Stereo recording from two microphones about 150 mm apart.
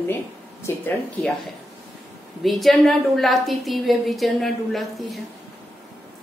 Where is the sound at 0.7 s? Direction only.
15° left (ahead or behind).